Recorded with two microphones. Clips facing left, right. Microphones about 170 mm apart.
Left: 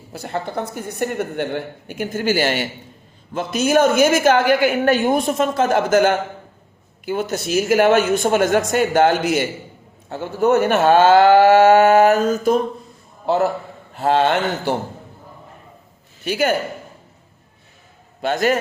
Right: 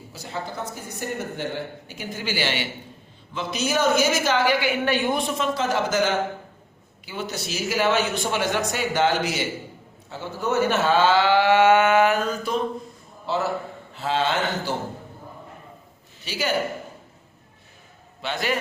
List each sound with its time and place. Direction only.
0.1 s a woman's voice: 55° left (ahead or behind)
16.2 s a woman's voice: 50° left (ahead or behind)
18.2 s a man's voice: 45° left (ahead or behind)